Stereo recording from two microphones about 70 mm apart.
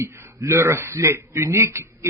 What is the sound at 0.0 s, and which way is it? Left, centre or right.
A man's voice, right.